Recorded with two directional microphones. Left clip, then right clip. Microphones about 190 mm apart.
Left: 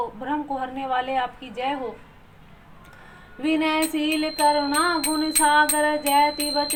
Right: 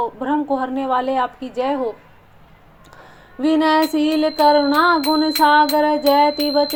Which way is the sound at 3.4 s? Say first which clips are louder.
Right 7 dB; 35° right (ahead or behind).